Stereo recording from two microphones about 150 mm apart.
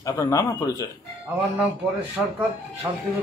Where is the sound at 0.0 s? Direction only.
25° left (ahead or behind).